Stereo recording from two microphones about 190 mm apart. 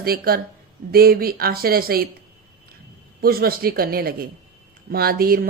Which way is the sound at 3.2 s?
50° right (ahead or behind).